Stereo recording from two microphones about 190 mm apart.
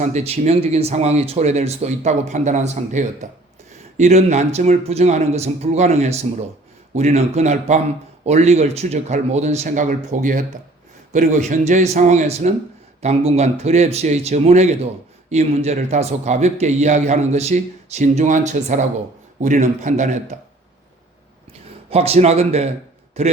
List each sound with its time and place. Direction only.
0.0 s speech: 35° right (ahead or behind)
21.8 s speech: 30° right (ahead or behind)